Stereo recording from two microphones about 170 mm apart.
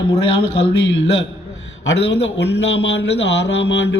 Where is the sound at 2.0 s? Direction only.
90° left.